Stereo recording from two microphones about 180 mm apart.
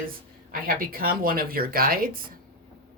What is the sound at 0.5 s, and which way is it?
A woman's voice, 55° right (ahead or behind).